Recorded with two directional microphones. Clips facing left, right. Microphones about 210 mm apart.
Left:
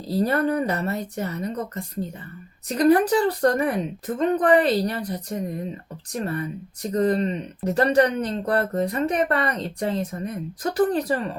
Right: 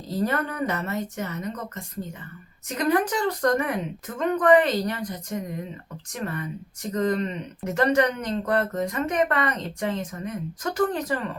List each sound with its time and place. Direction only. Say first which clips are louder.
0.3 s speech: left 5 dB; 35° left (ahead or behind)